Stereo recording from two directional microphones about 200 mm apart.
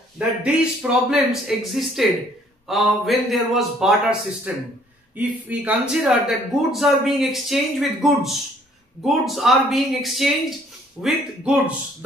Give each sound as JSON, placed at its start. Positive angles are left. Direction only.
{"t": 0.4, "sound": "a man's voice", "side_deg": -5}